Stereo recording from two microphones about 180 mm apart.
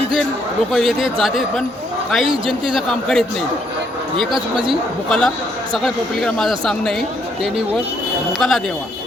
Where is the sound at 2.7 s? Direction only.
5° left (ahead or behind).